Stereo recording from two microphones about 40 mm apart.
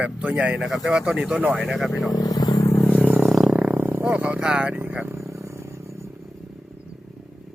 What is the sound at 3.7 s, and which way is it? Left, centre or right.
Wild animals, right.